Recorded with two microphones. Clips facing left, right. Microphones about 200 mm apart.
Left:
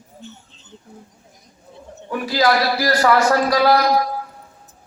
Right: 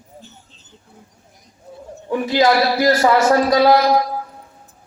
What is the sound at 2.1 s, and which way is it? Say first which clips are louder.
A man's voice: right 3 dB; 25° right (ahead or behind).